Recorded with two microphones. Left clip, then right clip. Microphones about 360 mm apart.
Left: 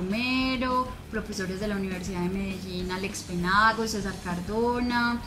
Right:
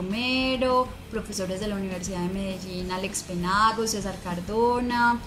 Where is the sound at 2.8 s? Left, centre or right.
Centre.